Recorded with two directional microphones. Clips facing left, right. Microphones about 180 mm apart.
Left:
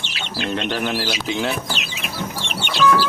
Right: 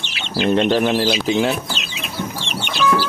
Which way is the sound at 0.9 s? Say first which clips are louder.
Right 6 dB; 20° right (ahead or behind).